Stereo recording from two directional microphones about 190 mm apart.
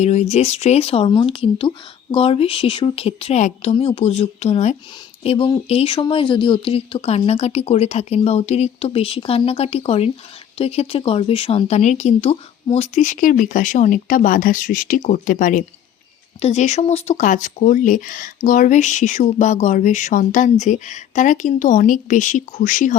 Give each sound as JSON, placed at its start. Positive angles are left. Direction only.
{"t": 0.0, "sound": "speech", "side_deg": 35}